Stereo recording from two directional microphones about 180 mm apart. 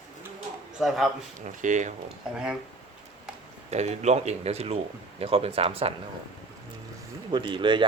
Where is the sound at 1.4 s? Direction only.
45° right (ahead or behind).